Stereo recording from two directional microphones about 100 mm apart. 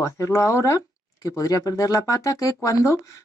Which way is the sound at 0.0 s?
30° left (ahead or behind).